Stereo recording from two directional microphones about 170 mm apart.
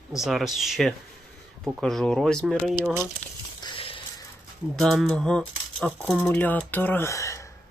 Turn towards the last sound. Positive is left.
turn(degrees=20)  # may be behind; listen again after turning